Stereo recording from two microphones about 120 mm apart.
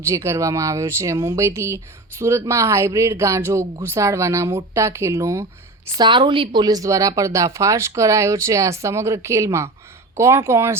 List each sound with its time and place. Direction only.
0.0 s speech: 25° right (ahead or behind)
6.0 s speech: 40° right (ahead or behind); by 10.8 s 20° right (ahead or behind)